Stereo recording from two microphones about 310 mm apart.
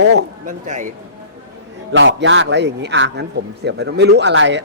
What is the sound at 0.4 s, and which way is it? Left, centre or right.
Speech, right.